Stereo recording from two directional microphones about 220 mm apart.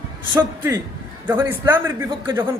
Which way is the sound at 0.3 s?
10° right (ahead or behind).